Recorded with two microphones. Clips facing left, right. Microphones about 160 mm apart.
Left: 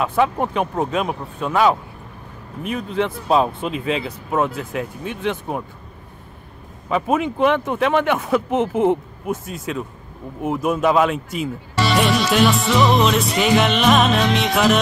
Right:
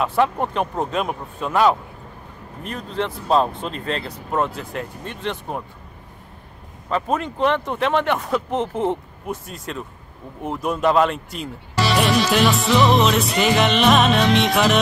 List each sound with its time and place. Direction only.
0.0 s speech: centre (ahead or behind)
6.9 s speech: 5° left (ahead or behind)